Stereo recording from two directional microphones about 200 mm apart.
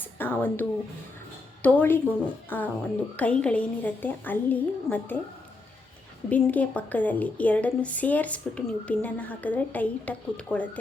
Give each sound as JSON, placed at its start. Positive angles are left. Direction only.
{"t": 0.2, "sound": "speech", "side_deg": 10}
{"t": 6.3, "sound": "speech", "side_deg": 10}